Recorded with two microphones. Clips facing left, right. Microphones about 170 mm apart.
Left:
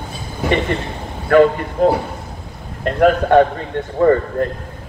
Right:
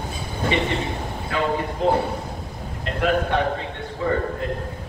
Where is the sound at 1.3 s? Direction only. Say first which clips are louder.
Left 12 dB; 60° left (ahead or behind).